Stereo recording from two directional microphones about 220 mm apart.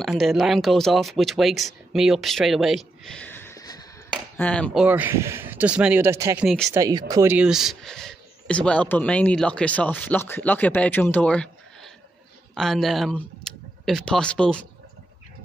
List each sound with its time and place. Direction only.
0.0 s speech: centre (ahead or behind)
4.8 s speech: 10° right (ahead or behind)